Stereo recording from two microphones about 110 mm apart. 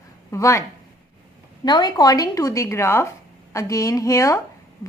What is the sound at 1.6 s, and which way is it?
A woman's voice, 40° left (ahead or behind).